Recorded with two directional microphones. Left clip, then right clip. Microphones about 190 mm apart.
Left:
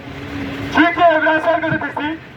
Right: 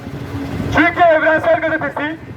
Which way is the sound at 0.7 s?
25° right (ahead or behind).